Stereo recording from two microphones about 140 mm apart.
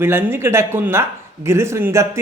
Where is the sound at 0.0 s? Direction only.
15° right (ahead or behind).